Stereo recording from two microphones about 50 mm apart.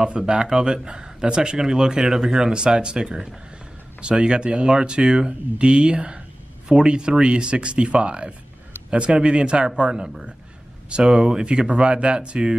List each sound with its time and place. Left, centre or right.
0.3 s speech: centre